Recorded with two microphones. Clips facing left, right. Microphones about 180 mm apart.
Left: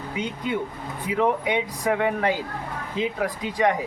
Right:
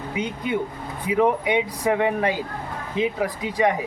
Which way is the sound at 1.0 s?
10° right (ahead or behind).